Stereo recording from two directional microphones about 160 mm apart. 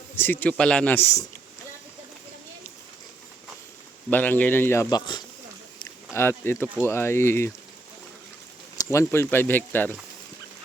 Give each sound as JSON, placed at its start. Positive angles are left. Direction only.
{"t": 0.2, "sound": "a man's voice", "side_deg": 10}
{"t": 4.1, "sound": "a man's voice", "side_deg": 10}
{"t": 6.1, "sound": "a man's voice", "side_deg": 15}
{"t": 8.9, "sound": "a man's voice", "side_deg": 15}